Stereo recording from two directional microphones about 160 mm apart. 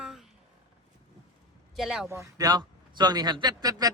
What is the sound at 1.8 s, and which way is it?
Speech, centre (ahead or behind).